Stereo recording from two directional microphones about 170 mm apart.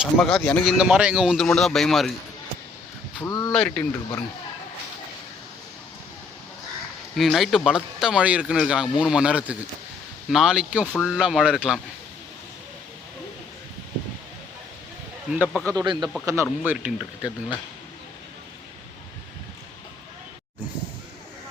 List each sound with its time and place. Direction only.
0.0 s speech: centre (ahead or behind)
3.2 s speech: 20° left (ahead or behind)
3.5 s speech: 5° left (ahead or behind)
7.2 s speech: centre (ahead or behind)
15.3 s speech: 5° right (ahead or behind)
15.6 s speech: 25° right (ahead or behind)